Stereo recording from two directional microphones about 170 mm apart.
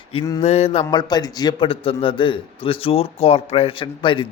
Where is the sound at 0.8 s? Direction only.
25° left (ahead or behind).